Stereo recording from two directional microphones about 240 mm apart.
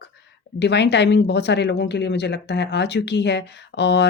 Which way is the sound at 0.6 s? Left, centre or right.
Left.